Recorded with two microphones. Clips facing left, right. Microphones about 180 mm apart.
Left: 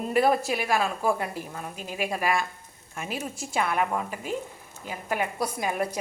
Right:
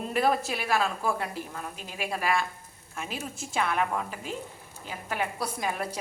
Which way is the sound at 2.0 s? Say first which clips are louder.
Left 2 dB; 15° left (ahead or behind).